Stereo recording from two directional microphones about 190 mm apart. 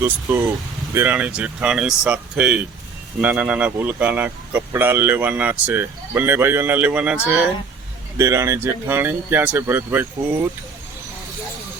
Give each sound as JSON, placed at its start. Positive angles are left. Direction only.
{"t": 0.3, "sound": "speech", "side_deg": -10}